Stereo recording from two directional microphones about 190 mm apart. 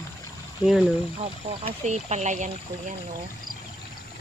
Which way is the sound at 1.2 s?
35° right (ahead or behind).